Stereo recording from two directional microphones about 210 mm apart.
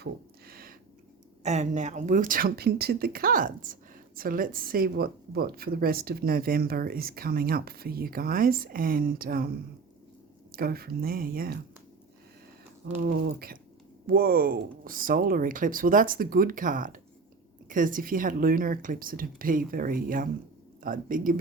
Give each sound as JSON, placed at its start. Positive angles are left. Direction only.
{"t": 0.0, "sound": "a sound", "side_deg": -45}
{"t": 1.5, "sound": "speech", "side_deg": -35}
{"t": 10.5, "sound": "speech", "side_deg": -45}
{"t": 12.9, "sound": "speech", "side_deg": -45}